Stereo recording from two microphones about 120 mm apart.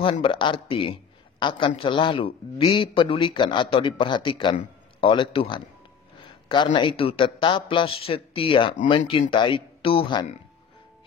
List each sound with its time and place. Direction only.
0.0 s a man's voice: 45° left (ahead or behind)